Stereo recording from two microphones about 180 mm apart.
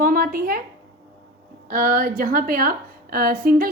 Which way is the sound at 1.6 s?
50° right (ahead or behind).